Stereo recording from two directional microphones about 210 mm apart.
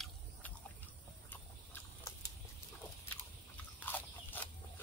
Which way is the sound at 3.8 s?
10° left (ahead or behind).